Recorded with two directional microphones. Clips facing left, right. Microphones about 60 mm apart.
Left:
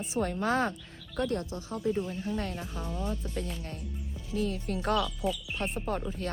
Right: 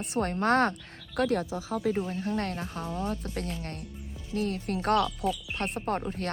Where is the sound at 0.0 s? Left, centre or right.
Right.